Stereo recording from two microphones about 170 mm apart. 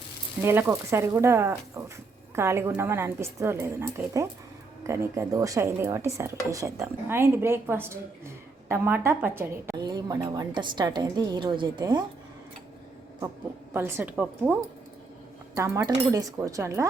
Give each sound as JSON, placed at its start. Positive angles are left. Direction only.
{"t": 0.4, "sound": "a woman's voice", "side_deg": -15}
{"t": 13.7, "sound": "a woman's voice", "side_deg": -15}
{"t": 15.5, "sound": "a woman's voice", "side_deg": -15}